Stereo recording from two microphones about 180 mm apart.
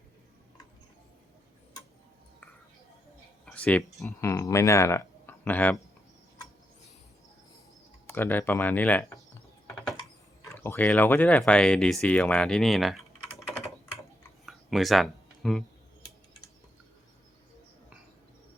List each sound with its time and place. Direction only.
3.4 s speech: 5° left (ahead or behind)
4.2 s speech: 15° left (ahead or behind)
8.0 s speech: 10° left (ahead or behind)
10.5 s speech: 15° left (ahead or behind)
14.4 s a sound: centre (ahead or behind)